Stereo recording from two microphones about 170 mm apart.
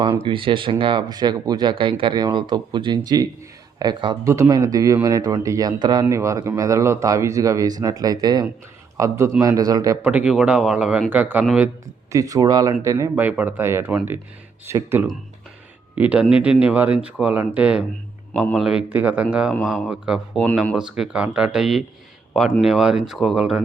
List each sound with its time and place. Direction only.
0.0 s speech: 30° right (ahead or behind); by 11.7 s 5° right (ahead or behind)
12.1 s a man's voice: 20° right (ahead or behind)